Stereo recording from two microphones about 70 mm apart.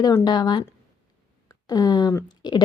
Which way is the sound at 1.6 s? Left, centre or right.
Left.